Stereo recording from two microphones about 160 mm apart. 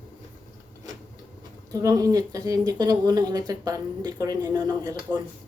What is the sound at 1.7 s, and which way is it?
Speech, 20° right (ahead or behind).